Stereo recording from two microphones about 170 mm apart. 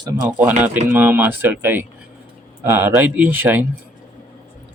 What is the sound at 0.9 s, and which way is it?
Speech, 10° right (ahead or behind).